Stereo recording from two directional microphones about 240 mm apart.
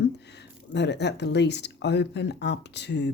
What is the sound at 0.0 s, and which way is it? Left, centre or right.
Speech, left.